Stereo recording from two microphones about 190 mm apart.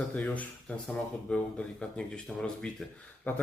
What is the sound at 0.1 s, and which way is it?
Speech, 10° left (ahead or behind).